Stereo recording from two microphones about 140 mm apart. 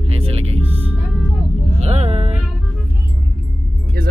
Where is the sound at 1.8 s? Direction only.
50° right (ahead or behind).